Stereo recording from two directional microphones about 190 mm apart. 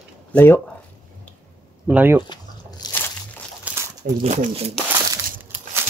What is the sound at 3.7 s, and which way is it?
Crumpling, 5° right (ahead or behind).